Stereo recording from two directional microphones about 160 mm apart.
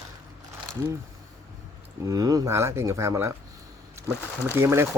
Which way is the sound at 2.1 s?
20° right (ahead or behind).